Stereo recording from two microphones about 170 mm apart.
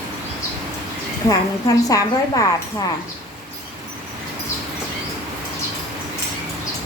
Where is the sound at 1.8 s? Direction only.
20° left (ahead or behind).